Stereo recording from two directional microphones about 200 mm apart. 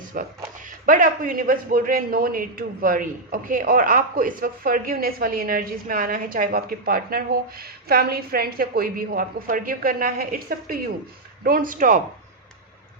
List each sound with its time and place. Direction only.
0.1 s a man's voice: 40° right (ahead or behind)